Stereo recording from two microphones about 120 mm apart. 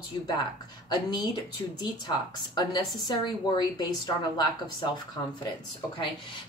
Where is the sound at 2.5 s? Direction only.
35° left (ahead or behind).